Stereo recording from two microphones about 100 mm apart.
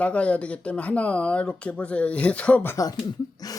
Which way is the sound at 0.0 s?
10° left (ahead or behind).